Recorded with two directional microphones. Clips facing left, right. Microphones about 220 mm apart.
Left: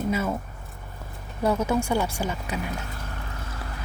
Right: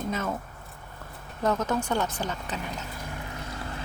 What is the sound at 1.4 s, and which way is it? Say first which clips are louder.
Speech: left 3 dB; 10° left (ahead or behind).